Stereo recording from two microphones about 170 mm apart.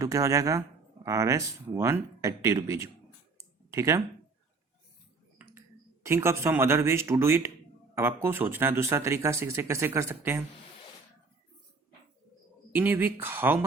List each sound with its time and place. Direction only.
0.0 s speech: 15° right (ahead or behind)
3.3 s a sound: 15° right (ahead or behind)
5.5 s speech: 15° right (ahead or behind)
12.7 s speech: 10° right (ahead or behind)